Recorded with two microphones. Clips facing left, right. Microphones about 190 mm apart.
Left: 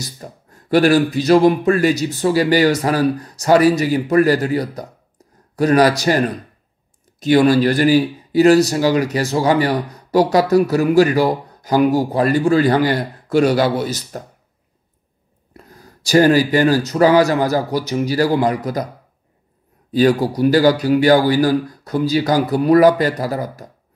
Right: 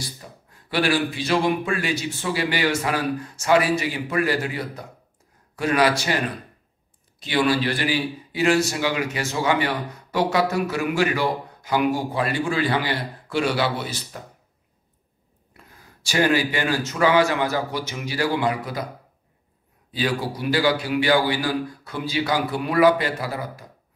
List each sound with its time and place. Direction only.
0.0 s a man's voice: 45° left (ahead or behind)
15.5 s a man's voice: 40° left (ahead or behind)
19.9 s a man's voice: 45° left (ahead or behind)